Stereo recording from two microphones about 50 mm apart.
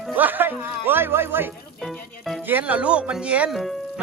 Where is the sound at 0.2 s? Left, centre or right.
Right.